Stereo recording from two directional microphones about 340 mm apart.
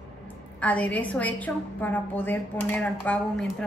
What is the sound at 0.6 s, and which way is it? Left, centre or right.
A woman's voice, centre.